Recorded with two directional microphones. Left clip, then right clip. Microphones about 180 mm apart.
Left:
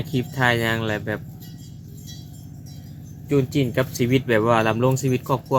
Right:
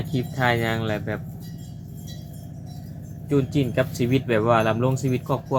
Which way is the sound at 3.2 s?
50° left (ahead or behind).